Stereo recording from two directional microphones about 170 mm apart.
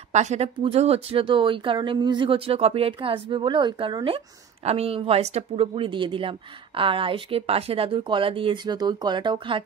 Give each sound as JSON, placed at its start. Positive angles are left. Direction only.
{"t": 0.1, "sound": "speech", "side_deg": -45}